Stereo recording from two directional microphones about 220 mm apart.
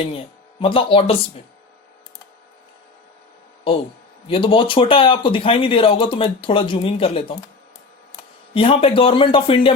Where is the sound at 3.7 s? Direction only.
25° left (ahead or behind).